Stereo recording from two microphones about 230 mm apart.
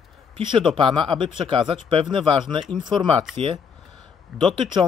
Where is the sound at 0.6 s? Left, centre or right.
Right.